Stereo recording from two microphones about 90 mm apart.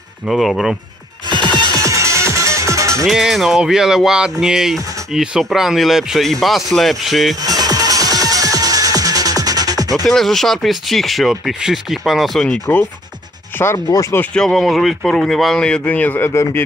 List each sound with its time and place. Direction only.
0.3 s speech: centre (ahead or behind)
1.5 s music: 55° right (ahead or behind)
1.8 s music: 35° right (ahead or behind)
3.1 s speech: 5° right (ahead or behind)
7.4 s music: 45° right (ahead or behind)
10.0 s speech: centre (ahead or behind)
12.7 s speech: 20° left (ahead or behind)
13.6 s speech: 30° left (ahead or behind)
14.3 s speech: 5° left (ahead or behind)
16.3 s speech: 30° left (ahead or behind)